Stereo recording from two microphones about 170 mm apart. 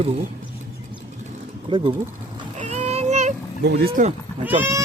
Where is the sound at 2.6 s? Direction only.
40° right (ahead or behind).